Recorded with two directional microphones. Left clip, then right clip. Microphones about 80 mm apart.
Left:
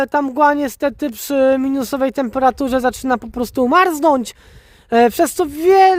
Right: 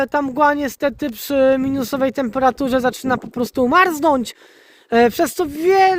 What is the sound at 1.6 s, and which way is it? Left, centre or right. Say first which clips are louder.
Speech: left 1 dB; left.